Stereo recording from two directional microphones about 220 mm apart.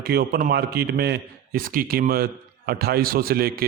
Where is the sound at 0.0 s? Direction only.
45° right (ahead or behind).